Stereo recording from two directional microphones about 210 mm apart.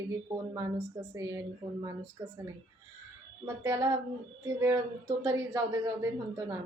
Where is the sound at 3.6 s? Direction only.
15° right (ahead or behind).